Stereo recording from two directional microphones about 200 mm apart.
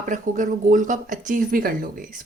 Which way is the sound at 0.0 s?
40° right (ahead or behind).